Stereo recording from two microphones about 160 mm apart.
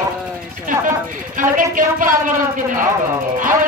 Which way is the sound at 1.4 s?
55° right (ahead or behind).